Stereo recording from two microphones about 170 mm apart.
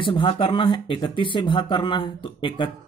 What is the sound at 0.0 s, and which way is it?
Speech, 30° left (ahead or behind).